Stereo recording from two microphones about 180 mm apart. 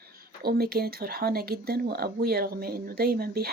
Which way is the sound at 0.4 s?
60° right (ahead or behind).